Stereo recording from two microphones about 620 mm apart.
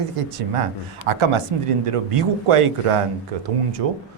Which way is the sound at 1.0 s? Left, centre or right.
Right.